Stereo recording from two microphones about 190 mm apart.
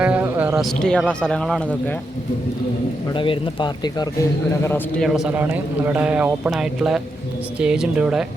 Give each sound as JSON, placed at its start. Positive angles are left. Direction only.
{"t": 0.0, "sound": "speech", "side_deg": -10}
{"t": 3.2, "sound": "a man's voice", "side_deg": 25}
{"t": 4.9, "sound": "speech", "side_deg": 0}